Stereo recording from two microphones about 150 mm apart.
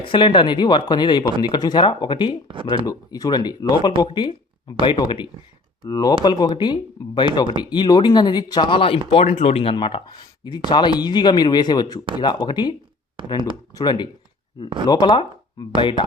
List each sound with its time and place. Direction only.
0.0 s speech: 35° left (ahead or behind)
13.2 s speech: 35° right (ahead or behind)
13.7 s speech: 30° left (ahead or behind)